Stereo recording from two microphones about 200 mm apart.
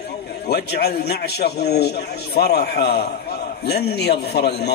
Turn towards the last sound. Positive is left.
turn(degrees=55)  # may be behind; listen again after turning